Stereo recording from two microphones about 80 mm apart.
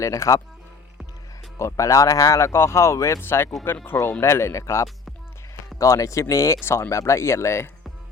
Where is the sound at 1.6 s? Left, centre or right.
Left.